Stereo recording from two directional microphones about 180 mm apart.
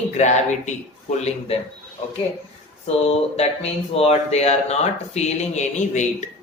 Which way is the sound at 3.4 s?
35° left (ahead or behind).